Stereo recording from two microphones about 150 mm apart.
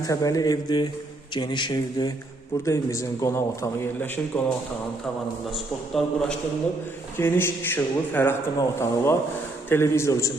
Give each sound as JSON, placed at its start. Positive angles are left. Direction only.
{"t": 0.1, "sound": "a man's voice", "side_deg": 25}
{"t": 5.9, "sound": "a man's voice", "side_deg": 0}
{"t": 7.2, "sound": "a man's voice", "side_deg": 15}